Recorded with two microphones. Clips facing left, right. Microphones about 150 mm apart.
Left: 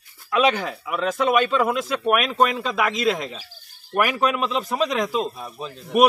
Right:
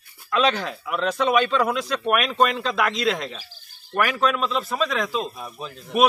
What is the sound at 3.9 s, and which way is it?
A man's voice, 15° left (ahead or behind).